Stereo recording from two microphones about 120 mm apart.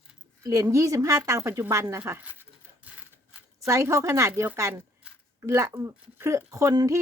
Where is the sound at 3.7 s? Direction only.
25° right (ahead or behind).